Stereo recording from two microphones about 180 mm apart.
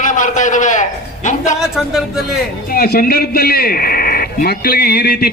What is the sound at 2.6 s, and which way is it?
A man's voice, 55° left (ahead or behind).